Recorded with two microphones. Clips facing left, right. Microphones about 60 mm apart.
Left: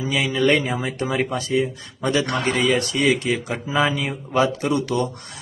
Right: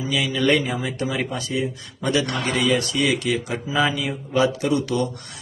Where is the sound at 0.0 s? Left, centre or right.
Left.